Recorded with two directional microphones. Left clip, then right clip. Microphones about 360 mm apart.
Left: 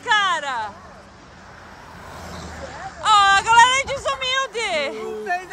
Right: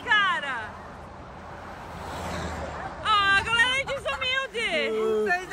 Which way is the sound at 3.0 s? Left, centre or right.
Centre.